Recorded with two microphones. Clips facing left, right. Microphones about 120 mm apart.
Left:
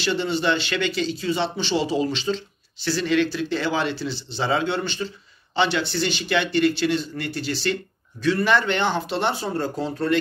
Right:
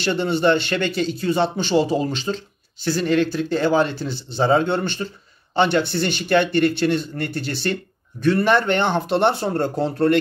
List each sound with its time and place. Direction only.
0.0 s speech: 50° right (ahead or behind)